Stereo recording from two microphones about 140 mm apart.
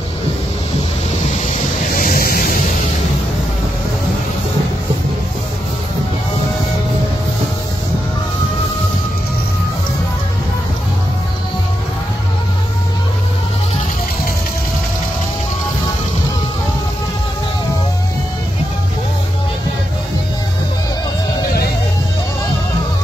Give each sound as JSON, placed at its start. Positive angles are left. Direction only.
{"t": 2.0, "sound": "music", "side_deg": 85}